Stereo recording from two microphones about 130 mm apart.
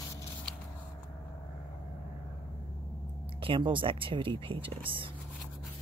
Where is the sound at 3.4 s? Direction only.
40° right (ahead or behind).